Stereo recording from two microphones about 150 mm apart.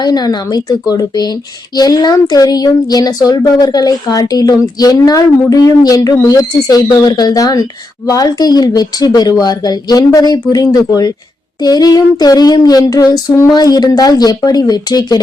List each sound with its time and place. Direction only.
0.0 s speech: 25° left (ahead or behind)